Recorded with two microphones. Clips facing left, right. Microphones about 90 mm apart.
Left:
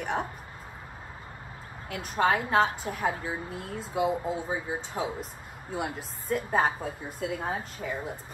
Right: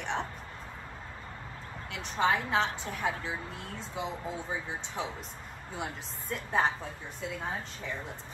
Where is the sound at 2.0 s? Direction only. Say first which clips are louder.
Left 3 dB; 5° left (ahead or behind).